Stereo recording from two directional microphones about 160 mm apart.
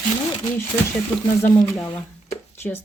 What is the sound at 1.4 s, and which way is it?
Speech, 20° left (ahead or behind).